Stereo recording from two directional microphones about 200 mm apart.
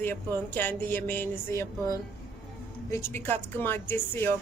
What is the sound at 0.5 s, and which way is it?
Speech, 10° left (ahead or behind).